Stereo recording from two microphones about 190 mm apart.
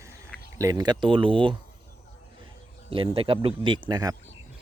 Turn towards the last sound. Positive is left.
turn(degrees=-20)  # may be behind; listen again after turning